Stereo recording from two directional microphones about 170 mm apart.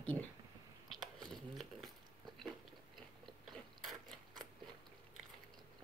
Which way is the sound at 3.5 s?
Centre (ahead or behind).